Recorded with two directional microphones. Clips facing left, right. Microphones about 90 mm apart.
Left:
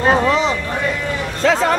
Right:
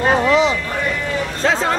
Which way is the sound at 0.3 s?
40° left (ahead or behind).